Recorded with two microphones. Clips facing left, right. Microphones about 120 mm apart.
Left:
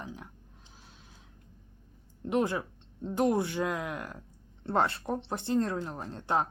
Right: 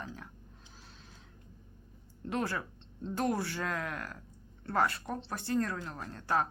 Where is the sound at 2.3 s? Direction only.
20° left (ahead or behind).